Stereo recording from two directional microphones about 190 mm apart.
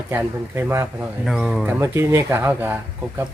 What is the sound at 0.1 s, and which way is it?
Speech, 10° right (ahead or behind).